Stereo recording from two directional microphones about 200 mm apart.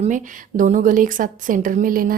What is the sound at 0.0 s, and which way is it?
A woman's voice, 40° right (ahead or behind).